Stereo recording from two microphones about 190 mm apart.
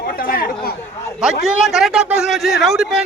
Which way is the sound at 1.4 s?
Centre (ahead or behind).